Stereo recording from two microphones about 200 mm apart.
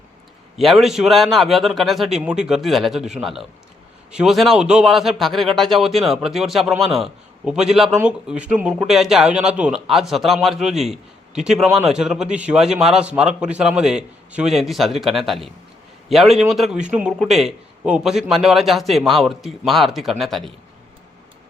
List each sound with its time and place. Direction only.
0.5 s a man's voice: centre (ahead or behind)